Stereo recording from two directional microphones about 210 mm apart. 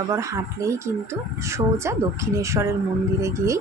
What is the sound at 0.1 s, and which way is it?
Speech, 15° right (ahead or behind).